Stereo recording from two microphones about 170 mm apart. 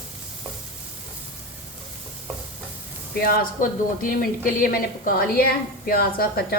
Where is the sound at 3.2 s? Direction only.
60° left (ahead or behind).